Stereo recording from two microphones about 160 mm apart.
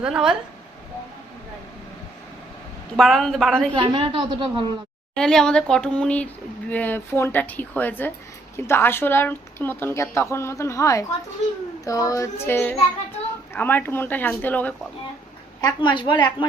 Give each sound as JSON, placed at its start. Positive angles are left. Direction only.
{"t": 0.0, "sound": "speech", "side_deg": -5}
{"t": 2.9, "sound": "speech", "side_deg": 0}
{"t": 3.8, "sound": "a woman's voice", "side_deg": -30}
{"t": 5.1, "sound": "a woman's voice", "side_deg": 5}
{"t": 11.9, "sound": "child singing", "side_deg": 20}
{"t": 13.5, "sound": "a woman's voice", "side_deg": 10}
{"t": 15.6, "sound": "child singing", "side_deg": 30}